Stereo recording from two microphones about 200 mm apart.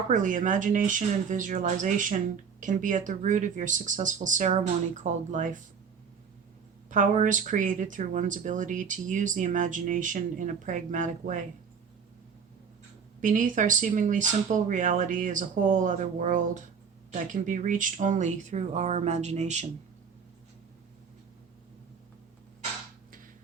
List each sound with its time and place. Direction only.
0.1 s speech: 40° right (ahead or behind)
6.9 s speech: 40° right (ahead or behind)
13.2 s speech: 40° right (ahead or behind)